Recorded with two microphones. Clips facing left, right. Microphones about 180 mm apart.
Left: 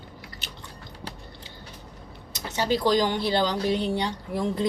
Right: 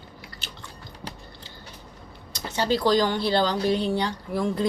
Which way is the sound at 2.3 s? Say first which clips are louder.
Right 1 dB; 15° left (ahead or behind).